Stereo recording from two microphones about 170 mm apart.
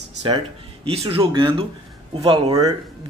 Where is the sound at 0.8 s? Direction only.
35° right (ahead or behind).